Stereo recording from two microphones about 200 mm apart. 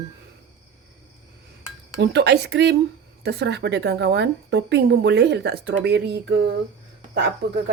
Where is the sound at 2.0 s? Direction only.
55° right (ahead or behind).